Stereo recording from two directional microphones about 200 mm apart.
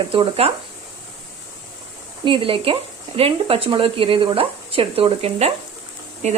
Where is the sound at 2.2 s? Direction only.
25° right (ahead or behind).